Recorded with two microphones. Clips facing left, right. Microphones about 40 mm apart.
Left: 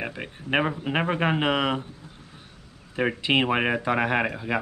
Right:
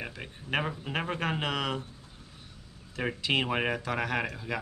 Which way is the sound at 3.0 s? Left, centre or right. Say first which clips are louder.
Left 6 dB; left.